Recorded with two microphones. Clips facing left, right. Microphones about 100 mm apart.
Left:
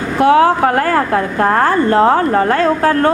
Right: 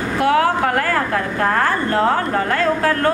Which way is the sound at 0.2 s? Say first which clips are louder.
Left 6 dB; 25° left (ahead or behind).